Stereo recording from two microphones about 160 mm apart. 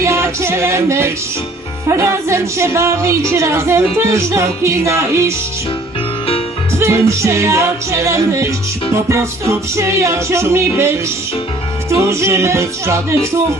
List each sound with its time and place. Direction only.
0.0 s music: 15° right (ahead or behind)
6.7 s music: 15° right (ahead or behind)